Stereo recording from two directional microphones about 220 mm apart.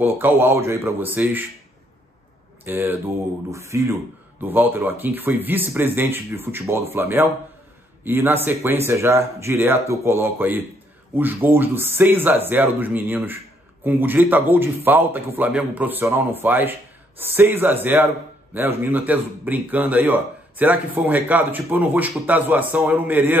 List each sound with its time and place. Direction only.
0.0 s a man's voice: 10° right (ahead or behind)
2.6 s a man's voice: 10° right (ahead or behind)